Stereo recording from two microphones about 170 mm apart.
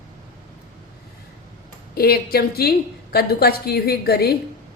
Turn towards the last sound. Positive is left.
turn(degrees=65)  # may be behind; listen again after turning